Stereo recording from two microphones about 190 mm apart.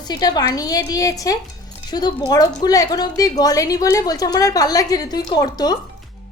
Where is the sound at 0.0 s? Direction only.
20° left (ahead or behind).